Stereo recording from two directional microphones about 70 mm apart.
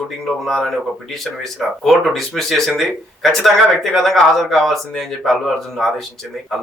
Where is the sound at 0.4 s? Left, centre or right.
Centre.